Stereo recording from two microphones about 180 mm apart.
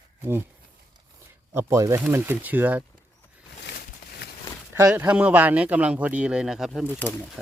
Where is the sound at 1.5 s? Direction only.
15° right (ahead or behind).